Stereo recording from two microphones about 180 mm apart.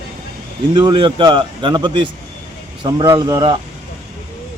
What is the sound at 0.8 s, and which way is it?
A man's voice, 25° right (ahead or behind).